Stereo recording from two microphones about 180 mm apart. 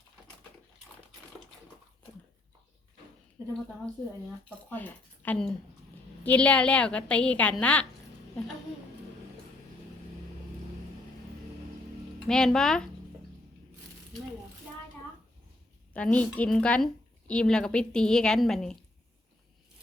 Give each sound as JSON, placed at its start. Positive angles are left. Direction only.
{"t": 3.4, "sound": "a sound", "side_deg": -15}
{"t": 4.4, "sound": "a woman's voice", "side_deg": 10}
{"t": 12.3, "sound": "a woman's voice", "side_deg": 5}
{"t": 15.9, "sound": "a woman's voice", "side_deg": 10}